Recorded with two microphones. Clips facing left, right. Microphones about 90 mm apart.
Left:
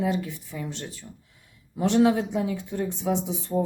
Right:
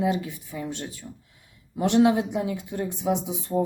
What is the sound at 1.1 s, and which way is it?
Speech, 20° right (ahead or behind).